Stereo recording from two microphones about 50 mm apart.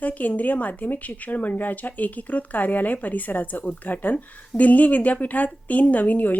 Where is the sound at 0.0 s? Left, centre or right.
Left.